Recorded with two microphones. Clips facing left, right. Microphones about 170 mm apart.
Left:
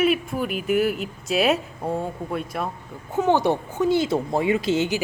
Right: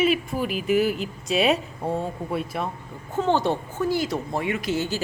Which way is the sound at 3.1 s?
15° left (ahead or behind).